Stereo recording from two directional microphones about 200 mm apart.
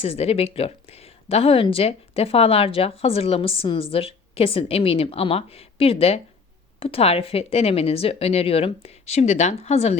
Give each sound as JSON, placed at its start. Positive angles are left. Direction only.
{"t": 0.0, "sound": "speech", "side_deg": 30}